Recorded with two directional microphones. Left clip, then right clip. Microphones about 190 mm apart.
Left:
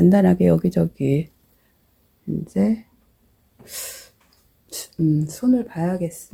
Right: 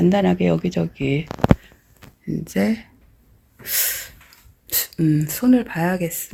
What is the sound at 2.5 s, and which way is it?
Speech, 10° left (ahead or behind).